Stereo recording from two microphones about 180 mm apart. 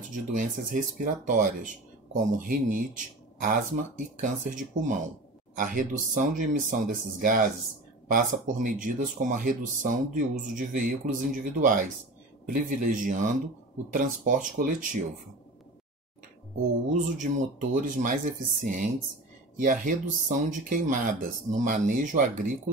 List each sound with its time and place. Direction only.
0.1 s speech: 45° right (ahead or behind)
17.2 s speech: 45° right (ahead or behind)